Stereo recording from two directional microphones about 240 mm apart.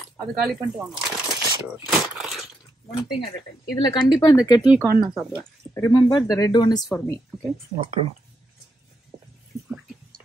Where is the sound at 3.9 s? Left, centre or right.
Centre.